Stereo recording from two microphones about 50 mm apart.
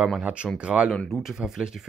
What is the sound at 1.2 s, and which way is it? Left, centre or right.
Speech, centre.